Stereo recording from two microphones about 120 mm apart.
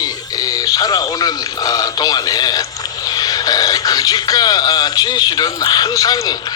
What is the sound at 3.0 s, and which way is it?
A man's voice, 30° left (ahead or behind).